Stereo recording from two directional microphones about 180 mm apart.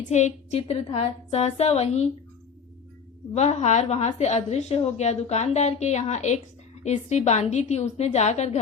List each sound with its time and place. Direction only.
0.1 s a woman's voice: 40° left (ahead or behind)
3.3 s a woman's voice: 40° left (ahead or behind)